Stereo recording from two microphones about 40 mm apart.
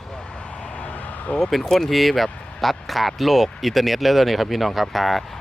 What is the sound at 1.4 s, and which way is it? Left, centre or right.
Speech, centre.